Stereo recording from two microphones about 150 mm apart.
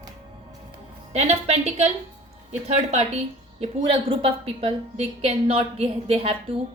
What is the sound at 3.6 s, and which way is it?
A woman's voice, 35° right (ahead or behind).